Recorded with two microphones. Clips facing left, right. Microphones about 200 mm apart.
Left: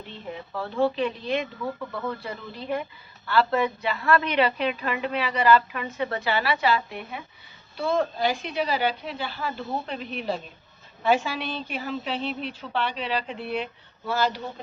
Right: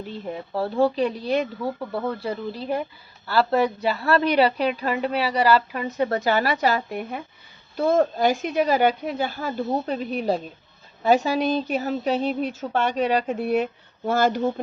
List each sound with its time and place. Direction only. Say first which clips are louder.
0.1 s a woman's voice: right 4 dB; 40° right (ahead or behind)